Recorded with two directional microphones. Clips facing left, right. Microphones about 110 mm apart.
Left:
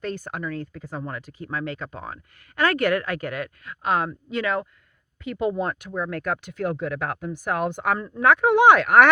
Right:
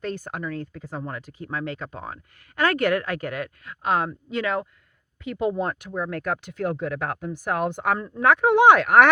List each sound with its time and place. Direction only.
0.0 s speech: 30° right (ahead or behind)